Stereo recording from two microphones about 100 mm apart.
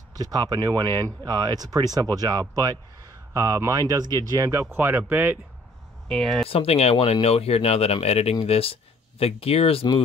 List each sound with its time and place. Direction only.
0.1 s speech: 40° right (ahead or behind)
4.5 s speech: 25° right (ahead or behind)
6.0 s speech: 5° left (ahead or behind)
6.5 s speech: 80° left
8.5 s speech: 75° left (ahead or behind)